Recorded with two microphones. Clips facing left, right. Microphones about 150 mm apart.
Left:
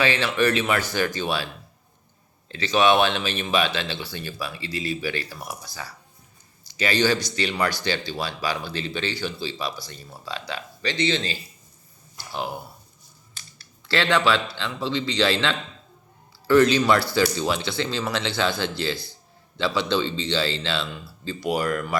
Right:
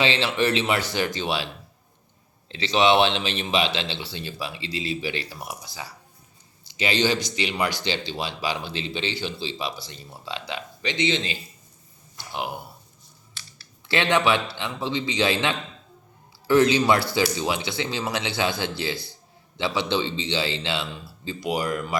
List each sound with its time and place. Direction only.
0.0 s speech: 25° right (ahead or behind)
2.5 s speech: 20° right (ahead or behind)
13.8 s speech: 20° right (ahead or behind)
19.5 s speech: 20° right (ahead or behind)